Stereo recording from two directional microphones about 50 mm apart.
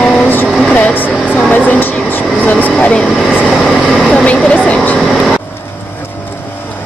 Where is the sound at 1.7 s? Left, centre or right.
Left.